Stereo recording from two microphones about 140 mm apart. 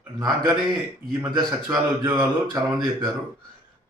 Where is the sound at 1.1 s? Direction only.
25° right (ahead or behind).